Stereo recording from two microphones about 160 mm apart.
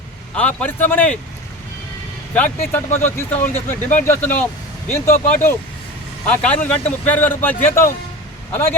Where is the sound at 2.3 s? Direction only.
10° left (ahead or behind).